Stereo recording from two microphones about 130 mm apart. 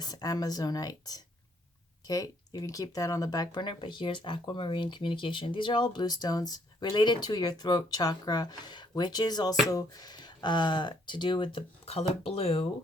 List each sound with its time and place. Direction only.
0.0 s speech: 30° left (ahead or behind); by 12.6 s 50° left (ahead or behind)